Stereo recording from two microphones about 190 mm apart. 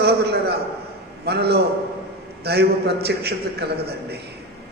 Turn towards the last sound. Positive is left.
turn(degrees=-60)  # may be behind; listen again after turning